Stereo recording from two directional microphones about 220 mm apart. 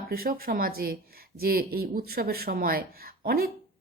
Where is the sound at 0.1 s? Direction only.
40° right (ahead or behind).